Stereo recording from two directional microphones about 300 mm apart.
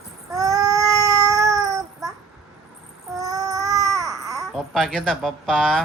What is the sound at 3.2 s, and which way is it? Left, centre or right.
Child singing, centre.